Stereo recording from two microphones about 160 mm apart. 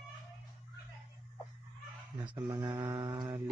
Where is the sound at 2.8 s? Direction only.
25° right (ahead or behind).